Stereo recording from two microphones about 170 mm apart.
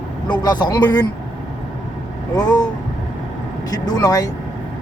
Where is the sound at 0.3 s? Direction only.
25° left (ahead or behind).